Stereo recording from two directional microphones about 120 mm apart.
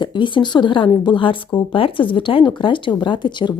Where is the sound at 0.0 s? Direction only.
40° left (ahead or behind).